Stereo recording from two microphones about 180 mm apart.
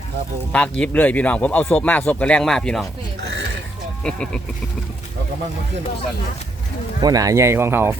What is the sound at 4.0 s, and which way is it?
Speech, 5° left (ahead or behind).